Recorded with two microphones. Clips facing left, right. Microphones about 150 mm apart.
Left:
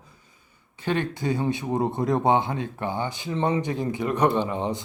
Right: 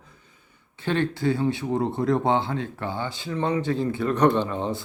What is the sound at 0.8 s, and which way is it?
Speech, 15° left (ahead or behind).